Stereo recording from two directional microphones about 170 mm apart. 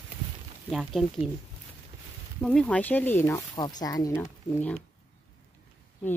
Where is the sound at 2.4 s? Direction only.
5° left (ahead or behind).